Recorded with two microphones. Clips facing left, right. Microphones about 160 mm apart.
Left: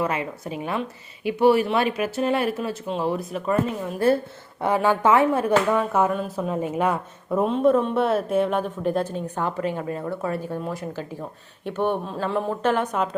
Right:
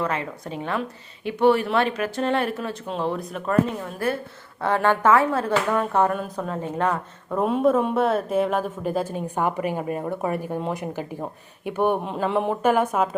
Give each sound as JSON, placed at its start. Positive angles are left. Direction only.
{"t": 0.0, "sound": "speech", "side_deg": 10}
{"t": 4.0, "sound": "a woman's voice", "side_deg": 25}
{"t": 4.6, "sound": "speech", "side_deg": 10}
{"t": 7.4, "sound": "speech", "side_deg": -5}